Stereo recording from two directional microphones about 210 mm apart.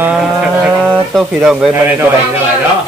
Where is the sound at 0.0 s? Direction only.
5° right (ahead or behind).